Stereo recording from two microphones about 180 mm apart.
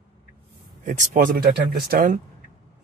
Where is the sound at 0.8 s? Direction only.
45° right (ahead or behind).